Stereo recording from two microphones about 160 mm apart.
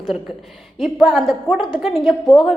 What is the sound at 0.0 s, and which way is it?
A woman's voice, centre (ahead or behind).